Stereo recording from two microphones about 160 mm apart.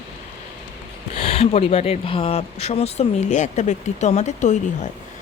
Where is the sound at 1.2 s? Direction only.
40° left (ahead or behind).